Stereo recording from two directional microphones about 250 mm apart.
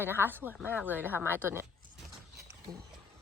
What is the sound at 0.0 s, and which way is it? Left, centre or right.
Speech, centre.